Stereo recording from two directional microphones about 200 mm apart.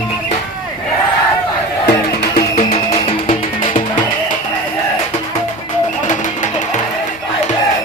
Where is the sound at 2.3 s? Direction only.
30° left (ahead or behind).